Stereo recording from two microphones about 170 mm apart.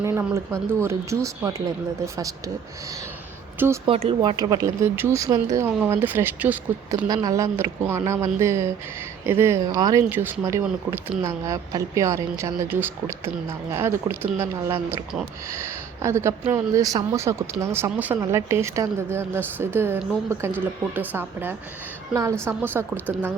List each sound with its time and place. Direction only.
0.0 s speech: 15° right (ahead or behind)
3.8 s speech: 35° right (ahead or behind); by 7.1 s 10° right (ahead or behind)
7.1 s speech: 20° right (ahead or behind)
10.6 s speech: 5° right (ahead or behind)
11.2 s speech: 15° right (ahead or behind)
21.1 s a woman's voice: 10° right (ahead or behind)